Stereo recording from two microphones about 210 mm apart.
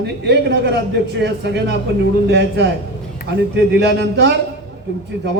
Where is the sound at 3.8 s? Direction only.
55° right (ahead or behind).